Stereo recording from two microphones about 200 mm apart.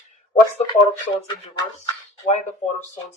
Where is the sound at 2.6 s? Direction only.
30° left (ahead or behind).